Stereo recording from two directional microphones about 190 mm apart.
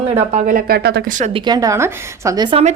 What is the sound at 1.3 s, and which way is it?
A woman's voice, 20° right (ahead or behind).